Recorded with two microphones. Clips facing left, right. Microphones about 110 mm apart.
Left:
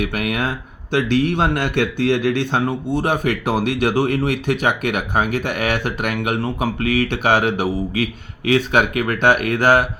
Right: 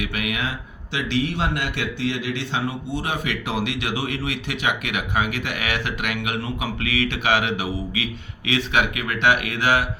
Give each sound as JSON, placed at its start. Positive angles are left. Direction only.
{"t": 0.0, "sound": "a man's voice", "side_deg": 45}